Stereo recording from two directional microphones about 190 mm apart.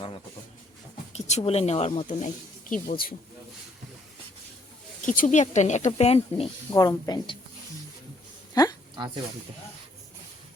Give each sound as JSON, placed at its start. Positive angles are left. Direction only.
{"t": 1.1, "sound": "speech", "side_deg": 35}
{"t": 5.0, "sound": "speech", "side_deg": 45}
{"t": 6.7, "sound": "a woman's voice", "side_deg": 20}
{"t": 8.6, "sound": "a woman's voice", "side_deg": 20}